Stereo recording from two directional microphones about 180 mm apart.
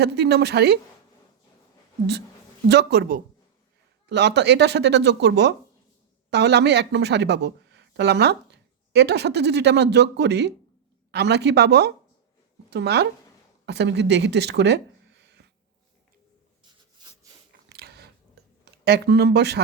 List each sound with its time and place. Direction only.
0.0 s speech: 65° right (ahead or behind)
2.6 s speech: 65° right (ahead or behind)
4.0 s speech: 70° right (ahead or behind)
17.7 s a sound: 65° right (ahead or behind)